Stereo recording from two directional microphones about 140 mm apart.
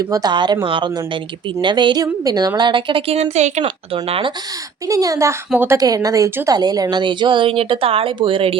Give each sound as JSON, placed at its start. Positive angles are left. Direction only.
{"t": 0.0, "sound": "speech", "side_deg": -30}
{"t": 3.3, "sound": "speech", "side_deg": -55}
{"t": 3.6, "sound": "speech", "side_deg": -40}
{"t": 4.9, "sound": "speech", "side_deg": -25}